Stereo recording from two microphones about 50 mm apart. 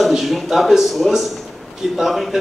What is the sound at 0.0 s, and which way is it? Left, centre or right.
A man's voice, centre.